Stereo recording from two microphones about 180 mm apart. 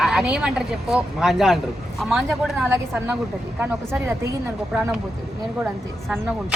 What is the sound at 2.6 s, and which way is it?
A woman's voice, 15° right (ahead or behind).